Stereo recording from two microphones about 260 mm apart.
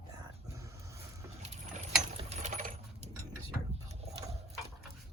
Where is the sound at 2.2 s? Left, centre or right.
Right.